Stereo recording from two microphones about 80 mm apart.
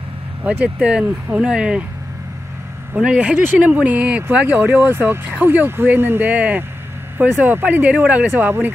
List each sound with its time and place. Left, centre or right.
0.4 s speech: right
2.9 s speech: centre